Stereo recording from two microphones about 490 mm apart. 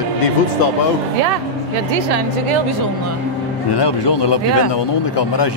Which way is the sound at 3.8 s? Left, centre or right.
Left.